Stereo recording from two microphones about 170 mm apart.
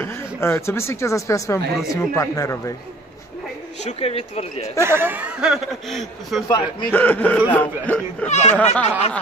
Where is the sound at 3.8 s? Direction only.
35° left (ahead or behind).